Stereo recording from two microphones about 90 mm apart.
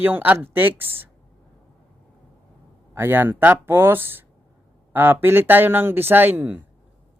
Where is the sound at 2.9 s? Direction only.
25° right (ahead or behind).